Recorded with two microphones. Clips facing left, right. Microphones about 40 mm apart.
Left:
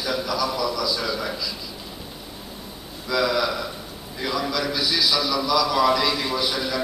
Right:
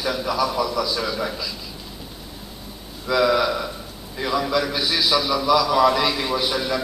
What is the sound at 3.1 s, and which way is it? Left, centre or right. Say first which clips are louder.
A man's voice: right 4 dB; centre.